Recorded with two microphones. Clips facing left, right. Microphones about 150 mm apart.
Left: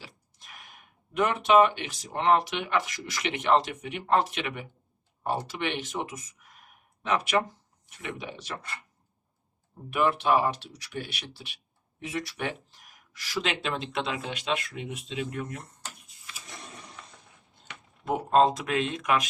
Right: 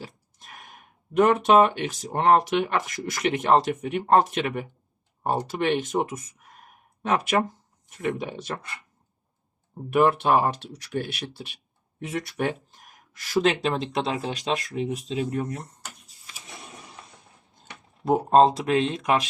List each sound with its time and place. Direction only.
0.3 s speech: 45° right (ahead or behind)
9.9 s speech: 45° right (ahead or behind)
16.6 s a sound: 5° right (ahead or behind)
18.0 s speech: 35° right (ahead or behind)